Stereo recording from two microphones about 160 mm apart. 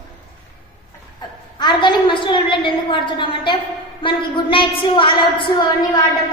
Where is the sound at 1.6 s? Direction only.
30° left (ahead or behind).